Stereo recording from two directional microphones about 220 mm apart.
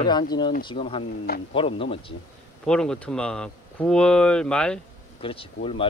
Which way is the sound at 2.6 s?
5° left (ahead or behind).